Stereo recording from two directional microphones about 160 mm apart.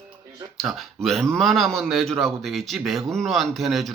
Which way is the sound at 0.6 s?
Centre (ahead or behind).